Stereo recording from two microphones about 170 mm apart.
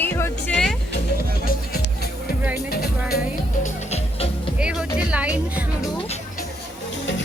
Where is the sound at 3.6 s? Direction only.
40° left (ahead or behind).